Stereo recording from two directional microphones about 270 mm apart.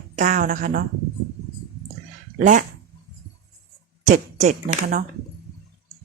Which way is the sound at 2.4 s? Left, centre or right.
Right.